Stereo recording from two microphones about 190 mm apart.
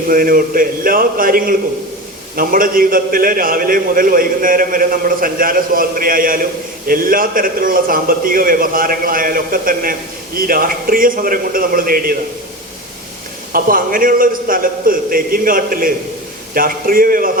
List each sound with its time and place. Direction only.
0.1 s a man's voice: 50° right (ahead or behind)
13.5 s a man's voice: 50° right (ahead or behind)